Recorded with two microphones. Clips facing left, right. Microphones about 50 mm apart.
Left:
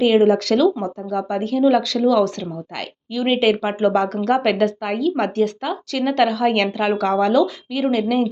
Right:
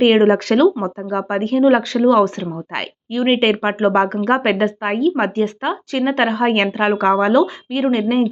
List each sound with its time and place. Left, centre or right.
0.0 s speech: right